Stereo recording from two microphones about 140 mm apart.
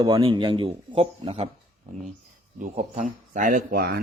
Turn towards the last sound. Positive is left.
turn(degrees=-90)